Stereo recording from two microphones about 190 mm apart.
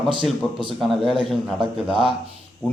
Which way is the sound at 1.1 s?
25° right (ahead or behind).